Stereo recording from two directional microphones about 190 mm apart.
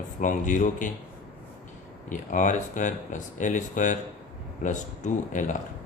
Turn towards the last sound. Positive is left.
turn(degrees=40)  # may be behind; listen again after turning